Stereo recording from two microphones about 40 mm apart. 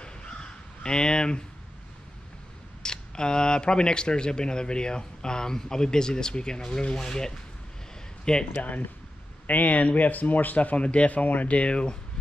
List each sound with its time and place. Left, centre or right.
0.0 s crow: left
2.8 s speech: left
9.5 s speech: left